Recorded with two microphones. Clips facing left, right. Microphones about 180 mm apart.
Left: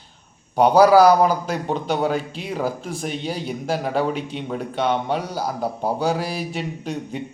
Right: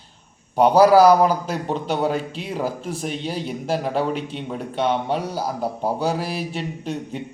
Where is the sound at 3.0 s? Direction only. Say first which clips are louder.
Left 1 dB; centre (ahead or behind).